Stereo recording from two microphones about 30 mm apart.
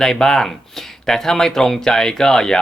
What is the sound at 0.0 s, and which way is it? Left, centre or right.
Speech, centre.